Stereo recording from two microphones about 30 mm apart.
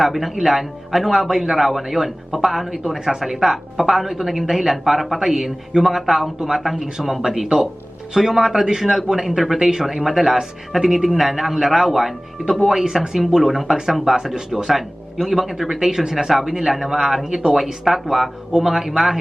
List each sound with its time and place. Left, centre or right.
0.0 s a woman's voice: centre
2.9 s a woman's voice: centre
14.0 s speech: centre
14.7 s a woman's voice: centre
16.8 s a woman's voice: centre